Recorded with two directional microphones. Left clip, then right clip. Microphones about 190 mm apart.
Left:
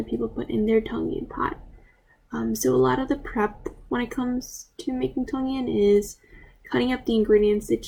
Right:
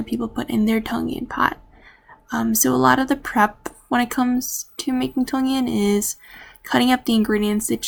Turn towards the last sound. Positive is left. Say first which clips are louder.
# left 2 dB
turn(degrees=-25)  # may be behind; listen again after turning